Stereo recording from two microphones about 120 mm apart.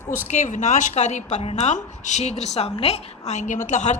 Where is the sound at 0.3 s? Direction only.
90° left.